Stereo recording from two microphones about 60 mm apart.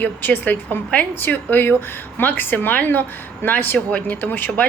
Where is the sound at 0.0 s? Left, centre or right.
Left.